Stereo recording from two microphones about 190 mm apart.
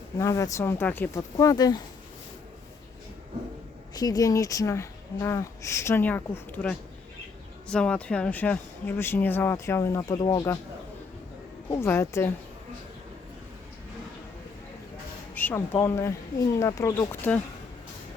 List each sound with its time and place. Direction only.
0.2 s speech: 15° left (ahead or behind)
3.9 s speech: 20° left (ahead or behind)
11.7 s speech: 10° left (ahead or behind)
15.4 s speech: 10° left (ahead or behind)